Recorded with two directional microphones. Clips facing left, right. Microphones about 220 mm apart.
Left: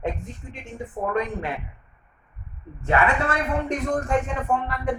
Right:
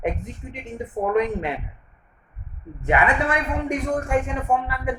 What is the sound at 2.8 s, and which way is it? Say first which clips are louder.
A woman's voice: right 1 dB; 15° right (ahead or behind).